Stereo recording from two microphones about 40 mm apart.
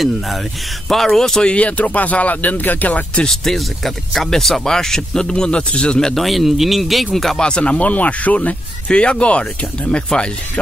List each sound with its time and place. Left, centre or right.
0.8 s speech: centre
1.4 s speech: left
3.3 s speech: centre
5.2 s a man's voice: left
6.1 s speech: centre
7.3 s speech: left